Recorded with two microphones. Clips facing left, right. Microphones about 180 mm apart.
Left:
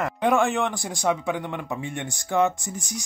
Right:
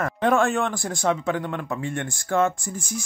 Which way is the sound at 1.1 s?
15° left (ahead or behind).